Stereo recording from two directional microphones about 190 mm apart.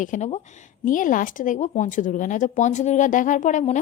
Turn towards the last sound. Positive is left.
turn(degrees=40)  # may be behind; listen again after turning